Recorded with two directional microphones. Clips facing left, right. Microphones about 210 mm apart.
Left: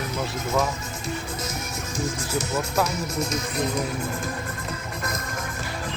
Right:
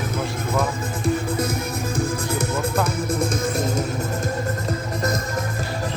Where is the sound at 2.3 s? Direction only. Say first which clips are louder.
Right 1 dB; 55° right (ahead or behind).